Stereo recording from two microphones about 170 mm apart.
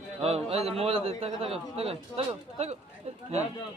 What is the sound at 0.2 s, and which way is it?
A man's voice, 35° right (ahead or behind).